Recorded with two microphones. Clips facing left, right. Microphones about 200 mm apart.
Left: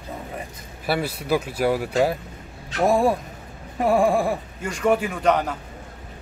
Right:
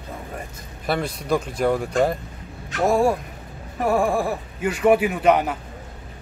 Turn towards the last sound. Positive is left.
turn(degrees=-5)  # may be behind; listen again after turning